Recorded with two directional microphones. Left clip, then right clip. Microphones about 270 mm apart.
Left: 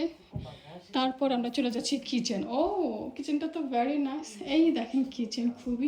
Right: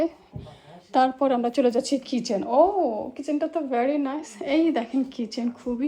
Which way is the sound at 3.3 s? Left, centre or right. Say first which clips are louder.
Right 6 dB; centre.